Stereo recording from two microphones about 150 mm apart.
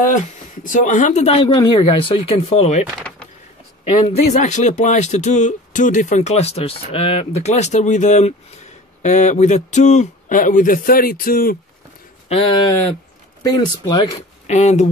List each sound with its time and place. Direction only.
0.7 s speech: 55° left (ahead or behind)
4.1 s speech: 50° left (ahead or behind); by 11.5 s 75° left (ahead or behind)
12.3 s speech: 40° left (ahead or behind)
13.4 s speech: 25° left (ahead or behind)
14.5 s speech: 50° left (ahead or behind)